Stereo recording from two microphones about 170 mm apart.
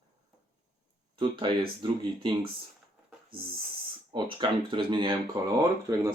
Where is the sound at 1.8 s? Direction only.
25° right (ahead or behind).